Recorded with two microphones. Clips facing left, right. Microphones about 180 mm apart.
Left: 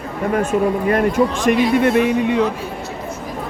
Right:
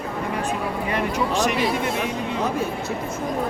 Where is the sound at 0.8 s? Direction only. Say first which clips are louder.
Left 8 dB; 50° left (ahead or behind).